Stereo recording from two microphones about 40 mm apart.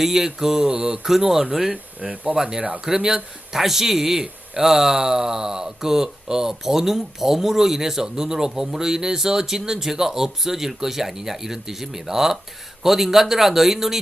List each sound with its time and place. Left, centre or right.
0.0 s speech: centre
1.0 s speech: centre
1.7 s speech: right
2.3 s speech: centre
2.6 s speech: right
2.8 s speech: centre